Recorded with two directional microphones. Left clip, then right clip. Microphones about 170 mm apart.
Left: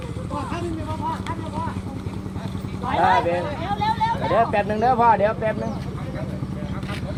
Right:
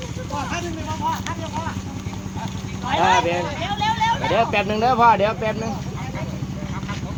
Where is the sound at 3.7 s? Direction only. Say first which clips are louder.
Right 2 dB; 35° right (ahead or behind).